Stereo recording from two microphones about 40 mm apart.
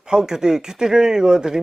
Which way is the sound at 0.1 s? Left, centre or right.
Centre.